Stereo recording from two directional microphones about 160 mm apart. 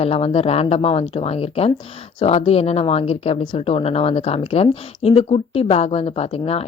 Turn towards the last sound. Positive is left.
turn(degrees=40)  # may be behind; listen again after turning